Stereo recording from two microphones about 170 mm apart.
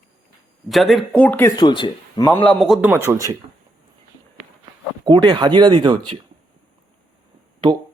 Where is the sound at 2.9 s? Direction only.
20° right (ahead or behind).